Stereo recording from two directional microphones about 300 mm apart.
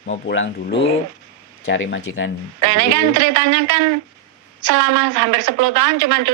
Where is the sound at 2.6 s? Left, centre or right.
Right.